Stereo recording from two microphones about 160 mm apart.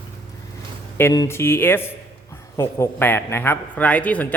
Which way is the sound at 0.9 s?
20° left (ahead or behind).